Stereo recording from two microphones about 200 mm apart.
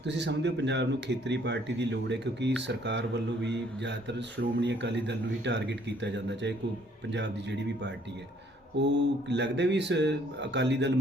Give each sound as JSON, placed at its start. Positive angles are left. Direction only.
{"t": 0.0, "sound": "speech", "side_deg": -60}